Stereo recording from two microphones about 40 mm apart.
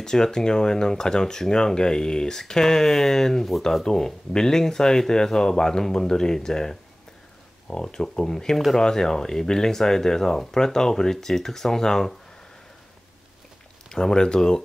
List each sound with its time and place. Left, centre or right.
0.0 s speech: centre
13.8 s speech: centre